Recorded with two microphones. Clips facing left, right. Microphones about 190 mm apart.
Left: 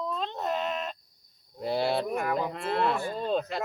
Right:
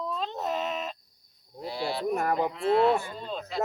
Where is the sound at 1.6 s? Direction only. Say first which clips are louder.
Left 3 dB; 55° left (ahead or behind).